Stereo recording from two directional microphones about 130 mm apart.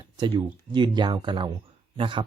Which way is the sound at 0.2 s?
35° right (ahead or behind).